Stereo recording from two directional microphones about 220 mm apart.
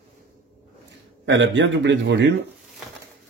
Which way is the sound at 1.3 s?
55° right (ahead or behind).